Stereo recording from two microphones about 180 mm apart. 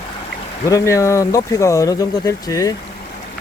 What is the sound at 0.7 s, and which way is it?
Speech, 15° left (ahead or behind).